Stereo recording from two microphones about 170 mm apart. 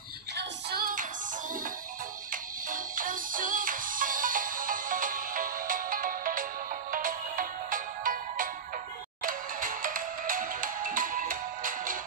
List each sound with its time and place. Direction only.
0.3 s music: 75° right (ahead or behind); by 1.0 s 60° right (ahead or behind)
2.3 s music: 55° right (ahead or behind)